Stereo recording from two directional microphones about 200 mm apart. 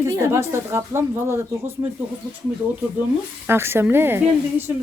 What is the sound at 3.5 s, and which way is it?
Speech, 10° right (ahead or behind).